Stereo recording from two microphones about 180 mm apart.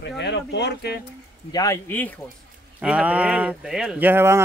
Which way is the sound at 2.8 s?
5° right (ahead or behind).